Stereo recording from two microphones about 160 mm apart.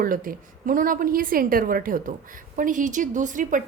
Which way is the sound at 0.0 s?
60° right (ahead or behind).